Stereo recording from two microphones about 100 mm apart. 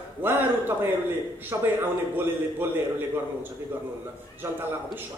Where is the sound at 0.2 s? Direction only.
20° right (ahead or behind).